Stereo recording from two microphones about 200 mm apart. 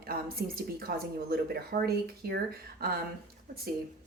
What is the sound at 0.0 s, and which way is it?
Speech, 50° right (ahead or behind).